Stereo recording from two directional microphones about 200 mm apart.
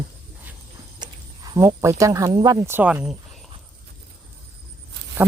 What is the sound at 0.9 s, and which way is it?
Speech, 20° right (ahead or behind).